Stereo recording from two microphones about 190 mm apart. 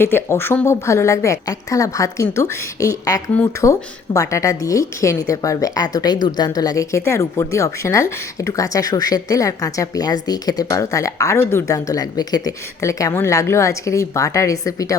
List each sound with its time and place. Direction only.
0.0 s a woman's voice: 10° left (ahead or behind)